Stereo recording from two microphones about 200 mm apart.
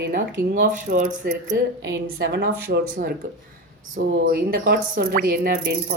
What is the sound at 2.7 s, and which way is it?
Speech, 40° right (ahead or behind).